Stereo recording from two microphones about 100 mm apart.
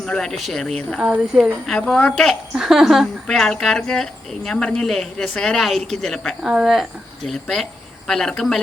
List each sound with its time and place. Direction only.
0.0 s speech: 5° left (ahead or behind)
2.0 s speech: 15° left (ahead or behind)
2.6 s speech: 5° right (ahead or behind)